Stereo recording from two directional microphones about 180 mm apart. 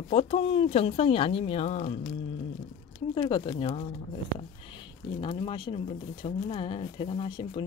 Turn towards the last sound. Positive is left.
turn(degrees=30)  # may be behind; listen again after turning